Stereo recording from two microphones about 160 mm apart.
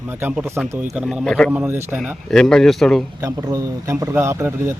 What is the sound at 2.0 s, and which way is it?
Speech, 5° left (ahead or behind).